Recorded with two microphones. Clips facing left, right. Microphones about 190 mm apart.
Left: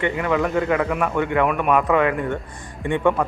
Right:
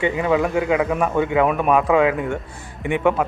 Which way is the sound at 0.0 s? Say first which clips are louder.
Right 2 dB; 20° right (ahead or behind).